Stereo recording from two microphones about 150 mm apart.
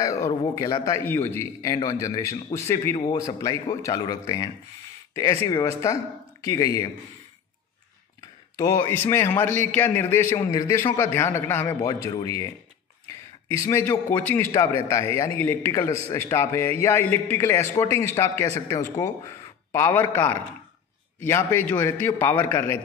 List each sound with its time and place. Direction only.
0.0 s a man's voice: 20° left (ahead or behind)
8.5 s a man's voice: 25° left (ahead or behind)
13.5 s a man's voice: 20° left (ahead or behind)
19.2 s a sound: 20° left (ahead or behind)
21.2 s a man's voice: 15° left (ahead or behind)